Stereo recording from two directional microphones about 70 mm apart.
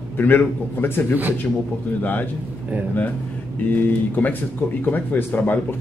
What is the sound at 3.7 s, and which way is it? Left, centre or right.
A man's voice, left.